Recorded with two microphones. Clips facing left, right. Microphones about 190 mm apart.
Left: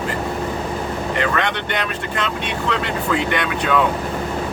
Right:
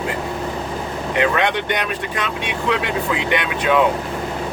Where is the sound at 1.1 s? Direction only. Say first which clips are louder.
Right 4 dB; 15° right (ahead or behind).